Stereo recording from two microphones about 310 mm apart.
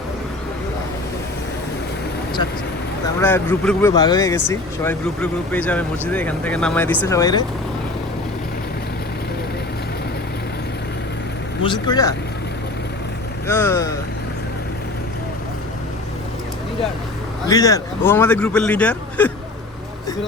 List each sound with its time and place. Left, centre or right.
3.2 s speech: centre
11.6 s speech: centre
13.5 s speech: centre
17.4 s speech: centre